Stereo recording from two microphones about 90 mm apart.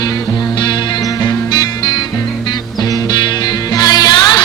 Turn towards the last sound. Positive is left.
turn(degrees=50)  # may be behind; listen again after turning